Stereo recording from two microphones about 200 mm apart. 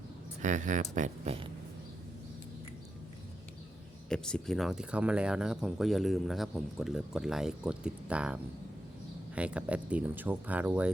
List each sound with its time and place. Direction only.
0.4 s speech: 40° right (ahead or behind)
4.1 s speech: 5° left (ahead or behind)